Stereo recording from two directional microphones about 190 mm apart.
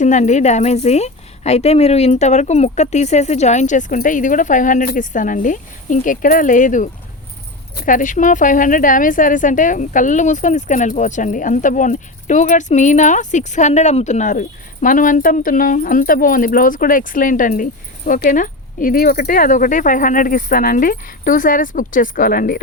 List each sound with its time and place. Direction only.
0.0 s a woman's voice: 40° left (ahead or behind)